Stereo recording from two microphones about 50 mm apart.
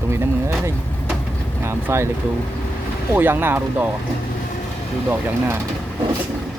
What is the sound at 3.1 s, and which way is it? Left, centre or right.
Speech, right.